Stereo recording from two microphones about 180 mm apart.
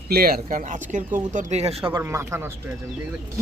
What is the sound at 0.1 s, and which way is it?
Speech, 60° right (ahead or behind).